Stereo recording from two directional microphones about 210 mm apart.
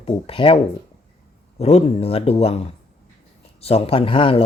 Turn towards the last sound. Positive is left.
turn(degrees=25)  # may be behind; listen again after turning